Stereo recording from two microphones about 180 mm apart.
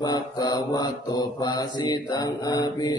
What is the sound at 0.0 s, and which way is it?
Mantra, 20° left (ahead or behind).